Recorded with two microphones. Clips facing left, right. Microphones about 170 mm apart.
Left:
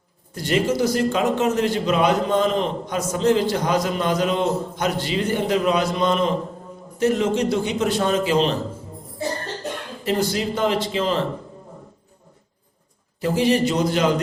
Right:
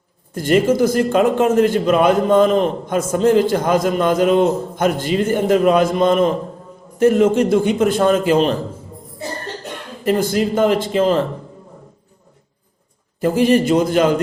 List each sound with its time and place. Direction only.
0.3 s a man's voice: 50° right (ahead or behind)
10.0 s a man's voice: 50° right (ahead or behind)
13.1 s a man's voice: 50° right (ahead or behind)